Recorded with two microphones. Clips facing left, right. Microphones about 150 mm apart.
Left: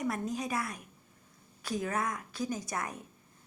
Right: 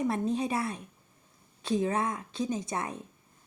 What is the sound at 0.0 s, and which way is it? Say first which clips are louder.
A woman's voice: right 5 dB; 25° right (ahead or behind).